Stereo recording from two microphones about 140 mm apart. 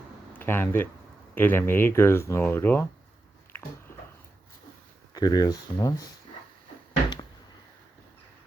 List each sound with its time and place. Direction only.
0.3 s speech: 15° left (ahead or behind)
5.1 s speech: 25° left (ahead or behind)